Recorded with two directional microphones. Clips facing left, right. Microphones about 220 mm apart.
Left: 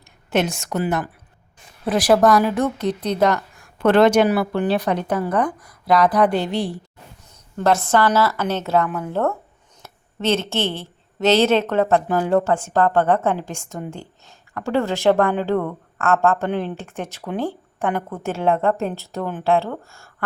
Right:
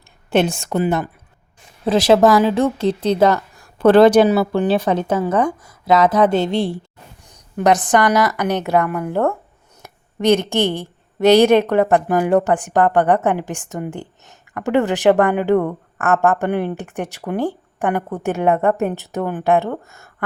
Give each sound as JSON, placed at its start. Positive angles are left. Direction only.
{"t": 0.3, "sound": "speech", "side_deg": -30}
{"t": 4.3, "sound": "a woman's voice", "side_deg": -25}
{"t": 18.5, "sound": "a woman's voice", "side_deg": -5}
{"t": 18.8, "sound": "a woman's voice", "side_deg": -15}